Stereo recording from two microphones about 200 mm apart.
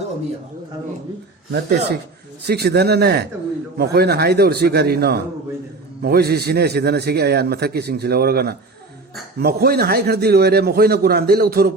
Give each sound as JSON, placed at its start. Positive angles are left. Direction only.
{"t": 1.5, "sound": "a man's voice", "side_deg": -60}